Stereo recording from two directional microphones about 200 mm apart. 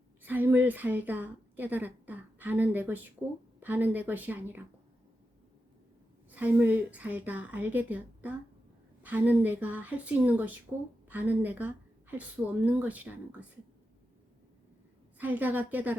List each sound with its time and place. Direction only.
0.2 s a woman's voice: 10° right (ahead or behind)
6.3 s a woman's voice: 10° right (ahead or behind)
15.2 s a woman's voice: 10° right (ahead or behind)